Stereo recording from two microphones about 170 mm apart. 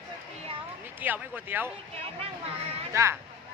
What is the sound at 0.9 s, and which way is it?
Speech, 10° right (ahead or behind).